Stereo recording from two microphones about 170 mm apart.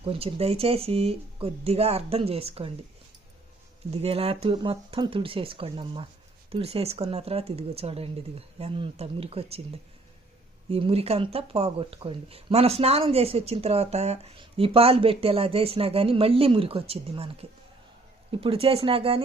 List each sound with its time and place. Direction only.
0.0 s speech: 35° right (ahead or behind)
3.9 s speech: 35° right (ahead or behind)
10.7 s speech: 35° right (ahead or behind)